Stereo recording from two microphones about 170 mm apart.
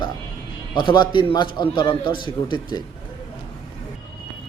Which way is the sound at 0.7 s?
30° left (ahead or behind).